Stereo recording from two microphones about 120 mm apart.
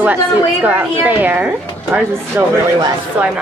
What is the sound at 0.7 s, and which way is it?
Speech, 10° right (ahead or behind).